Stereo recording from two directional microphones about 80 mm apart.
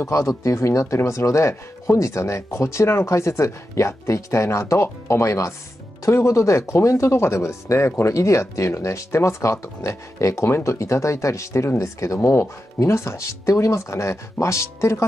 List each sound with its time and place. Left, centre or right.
0.0 s speech: left